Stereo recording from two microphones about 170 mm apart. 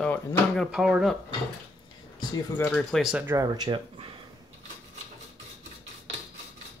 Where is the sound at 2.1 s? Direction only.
25° left (ahead or behind).